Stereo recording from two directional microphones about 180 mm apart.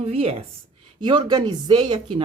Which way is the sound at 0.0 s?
35° right (ahead or behind).